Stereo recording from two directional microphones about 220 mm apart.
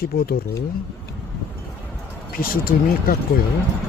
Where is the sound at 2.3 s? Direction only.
40° left (ahead or behind).